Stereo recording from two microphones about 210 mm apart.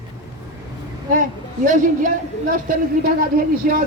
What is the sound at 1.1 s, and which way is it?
A man's voice, 40° right (ahead or behind).